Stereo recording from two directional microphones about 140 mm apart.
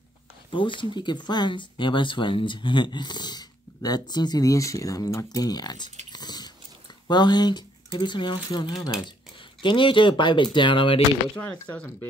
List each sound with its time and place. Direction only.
0.5 s speech: 35° left (ahead or behind)
6.0 s dog: 30° left (ahead or behind)
7.1 s speech: 30° left (ahead or behind)
11.3 s speech: 10° left (ahead or behind)